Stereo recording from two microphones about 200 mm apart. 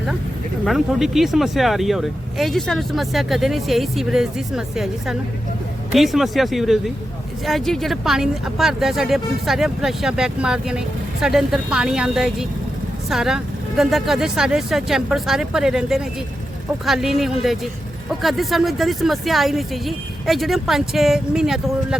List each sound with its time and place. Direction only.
0.6 s speech: centre (ahead or behind)